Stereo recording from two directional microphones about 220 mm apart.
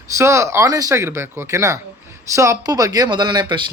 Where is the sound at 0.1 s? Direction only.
15° right (ahead or behind).